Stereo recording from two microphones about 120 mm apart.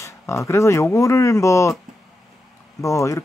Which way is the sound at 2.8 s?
25° left (ahead or behind).